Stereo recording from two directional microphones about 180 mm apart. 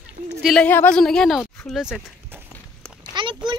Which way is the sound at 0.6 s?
10° left (ahead or behind).